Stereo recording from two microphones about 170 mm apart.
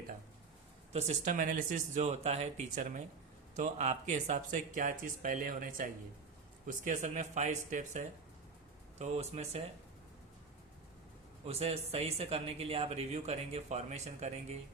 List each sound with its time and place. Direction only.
0.9 s speech: 45° right (ahead or behind)
11.4 s speech: 35° right (ahead or behind)